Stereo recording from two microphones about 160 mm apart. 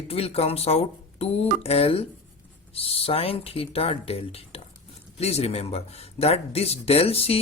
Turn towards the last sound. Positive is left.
turn(degrees=40)  # may be behind; listen again after turning